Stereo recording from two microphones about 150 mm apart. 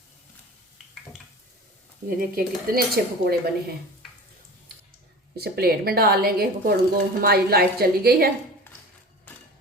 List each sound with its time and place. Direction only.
2.0 s cutlery: 80° right
5.4 s a woman's voice: 90° right